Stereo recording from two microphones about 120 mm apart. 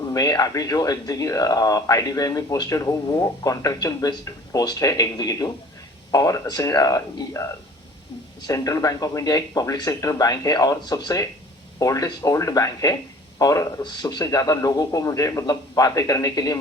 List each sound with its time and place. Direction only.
0.0 s speech: 30° left (ahead or behind)